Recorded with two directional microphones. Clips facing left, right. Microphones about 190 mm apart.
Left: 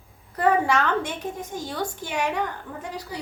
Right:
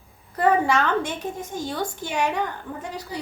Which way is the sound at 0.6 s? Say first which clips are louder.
Right 1 dB; 25° right (ahead or behind).